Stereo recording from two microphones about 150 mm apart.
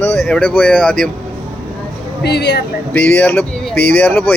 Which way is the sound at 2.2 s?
90° left.